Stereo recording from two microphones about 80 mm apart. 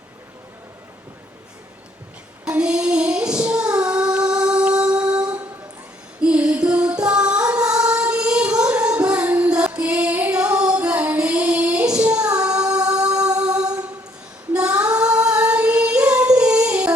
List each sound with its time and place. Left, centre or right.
2.4 s female singing: centre
6.2 s music: centre
14.5 s female singing: centre
15.1 s singing: centre